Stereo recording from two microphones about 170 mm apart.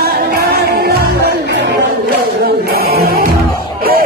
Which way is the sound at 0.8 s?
80° right.